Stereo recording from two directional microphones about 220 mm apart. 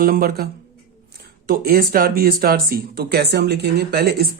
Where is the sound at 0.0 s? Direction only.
40° right (ahead or behind).